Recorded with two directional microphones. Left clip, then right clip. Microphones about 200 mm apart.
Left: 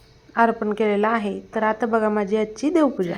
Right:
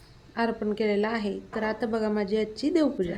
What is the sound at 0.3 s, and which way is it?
A woman's voice, 5° left (ahead or behind).